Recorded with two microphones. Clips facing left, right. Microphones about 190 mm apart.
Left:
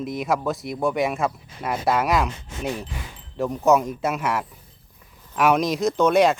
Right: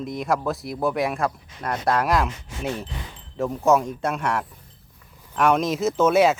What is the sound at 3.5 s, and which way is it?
Speech, centre (ahead or behind).